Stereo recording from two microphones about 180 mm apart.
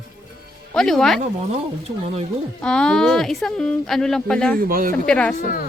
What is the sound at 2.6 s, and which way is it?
A woman's voice, 5° left (ahead or behind).